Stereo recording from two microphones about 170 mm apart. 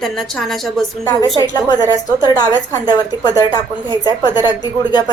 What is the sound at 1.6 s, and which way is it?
A woman's voice, 25° left (ahead or behind).